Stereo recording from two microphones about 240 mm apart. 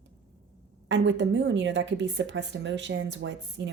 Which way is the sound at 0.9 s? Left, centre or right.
Right.